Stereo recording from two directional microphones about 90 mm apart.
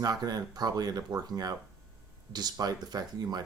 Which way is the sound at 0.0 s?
45° right (ahead or behind).